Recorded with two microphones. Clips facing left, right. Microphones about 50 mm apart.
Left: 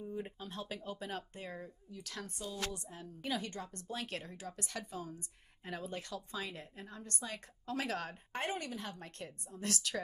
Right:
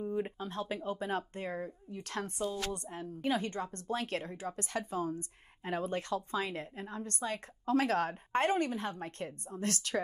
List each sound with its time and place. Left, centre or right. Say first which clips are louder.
0.2 s a woman's voice: right 7 dB; right